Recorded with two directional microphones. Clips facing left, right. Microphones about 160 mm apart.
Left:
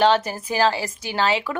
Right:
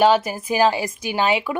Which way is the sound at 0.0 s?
10° right (ahead or behind).